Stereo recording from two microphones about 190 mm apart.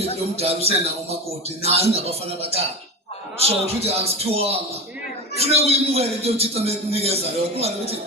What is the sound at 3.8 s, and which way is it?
A man's voice, 30° right (ahead or behind).